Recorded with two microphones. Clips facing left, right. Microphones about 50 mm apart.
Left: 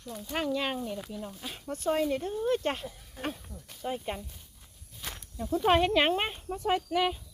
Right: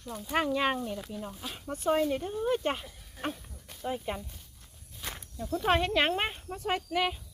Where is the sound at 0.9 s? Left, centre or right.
Centre.